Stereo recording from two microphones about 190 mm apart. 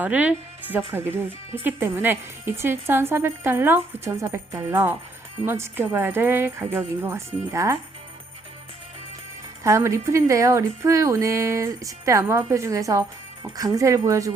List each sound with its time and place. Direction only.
0.0 s speech: 5° right (ahead or behind)
9.6 s speech: 15° right (ahead or behind)